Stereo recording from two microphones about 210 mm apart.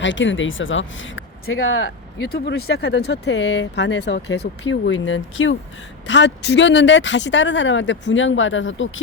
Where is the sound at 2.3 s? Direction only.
50° left (ahead or behind).